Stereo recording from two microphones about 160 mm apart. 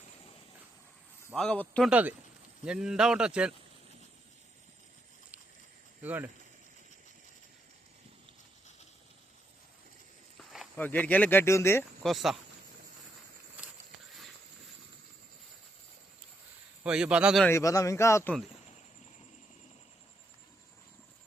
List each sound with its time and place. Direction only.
1.3 s a man's voice: 5° left (ahead or behind)
1.9 s a man's voice: 10° right (ahead or behind)
6.0 s speech: 10° right (ahead or behind)
10.8 s speech: 10° left (ahead or behind)
12.0 s a man's voice: centre (ahead or behind)
16.8 s a man's voice: 5° right (ahead or behind)
17.4 s speech: 20° left (ahead or behind)